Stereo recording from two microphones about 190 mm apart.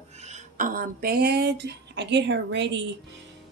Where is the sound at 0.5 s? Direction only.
45° right (ahead or behind).